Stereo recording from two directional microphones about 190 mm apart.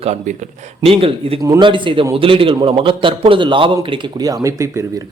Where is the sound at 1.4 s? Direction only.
20° right (ahead or behind).